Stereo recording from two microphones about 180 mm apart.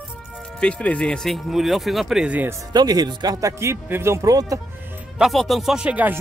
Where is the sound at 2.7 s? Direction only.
20° right (ahead or behind).